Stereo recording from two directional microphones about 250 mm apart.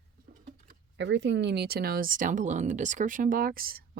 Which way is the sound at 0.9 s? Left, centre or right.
Right.